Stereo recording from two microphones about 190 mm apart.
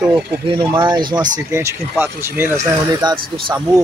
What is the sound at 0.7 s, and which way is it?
Speech, 25° right (ahead or behind).